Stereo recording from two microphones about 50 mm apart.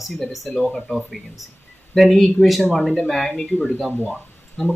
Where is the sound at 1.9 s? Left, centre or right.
Centre.